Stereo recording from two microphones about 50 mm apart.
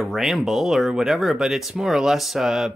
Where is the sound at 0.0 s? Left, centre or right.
Centre.